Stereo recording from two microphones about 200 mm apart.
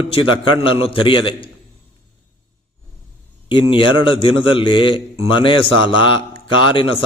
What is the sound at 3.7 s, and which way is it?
A man's voice, 25° left (ahead or behind).